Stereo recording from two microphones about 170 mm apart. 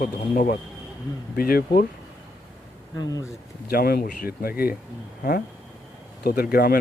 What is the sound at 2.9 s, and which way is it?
Speech, 20° left (ahead or behind).